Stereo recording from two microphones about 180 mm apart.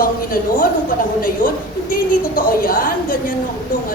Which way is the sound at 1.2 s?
50° left (ahead or behind).